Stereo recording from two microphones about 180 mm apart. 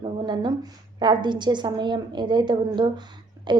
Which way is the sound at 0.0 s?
25° right (ahead or behind).